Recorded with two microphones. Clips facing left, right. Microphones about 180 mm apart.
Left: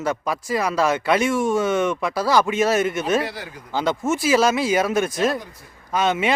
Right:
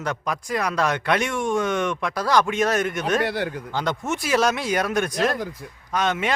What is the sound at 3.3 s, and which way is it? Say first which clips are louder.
Speech: right 8 dB; 65° right (ahead or behind).